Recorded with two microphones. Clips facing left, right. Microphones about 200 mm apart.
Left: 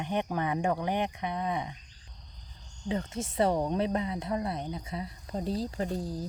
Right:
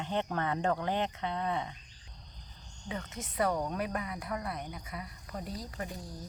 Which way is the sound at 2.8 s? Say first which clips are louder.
Left 8 dB; 30° left (ahead or behind).